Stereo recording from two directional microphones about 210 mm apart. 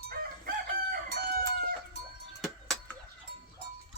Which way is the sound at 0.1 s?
45° right (ahead or behind).